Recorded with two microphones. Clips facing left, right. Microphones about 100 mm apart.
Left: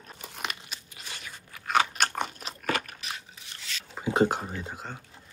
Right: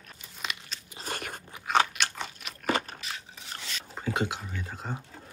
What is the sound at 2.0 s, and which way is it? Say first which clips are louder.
Crunch: left 5 dB; 50° left (ahead or behind).